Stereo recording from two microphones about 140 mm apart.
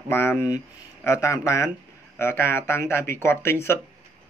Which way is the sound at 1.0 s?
20° left (ahead or behind).